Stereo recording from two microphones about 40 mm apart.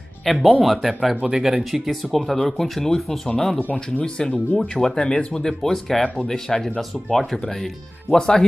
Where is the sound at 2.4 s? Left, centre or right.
Centre.